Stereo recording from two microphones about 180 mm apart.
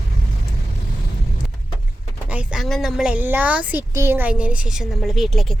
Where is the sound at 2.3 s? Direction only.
Centre (ahead or behind).